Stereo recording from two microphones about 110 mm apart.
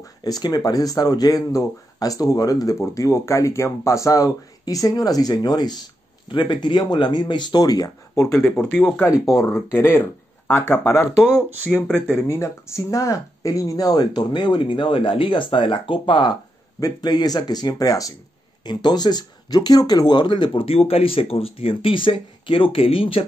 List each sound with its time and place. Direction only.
0.0 s speech: 35° left (ahead or behind)
8.1 s speech: 25° left (ahead or behind)
8.5 s speech: 10° left (ahead or behind)
9.4 s speech: 25° left (ahead or behind)
11.1 s speech: 5° right (ahead or behind)
11.7 s speech: 20° left (ahead or behind); by 23.2 s 55° left (ahead or behind)